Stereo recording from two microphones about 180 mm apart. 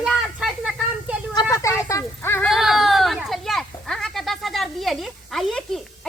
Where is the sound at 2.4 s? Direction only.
Centre (ahead or behind).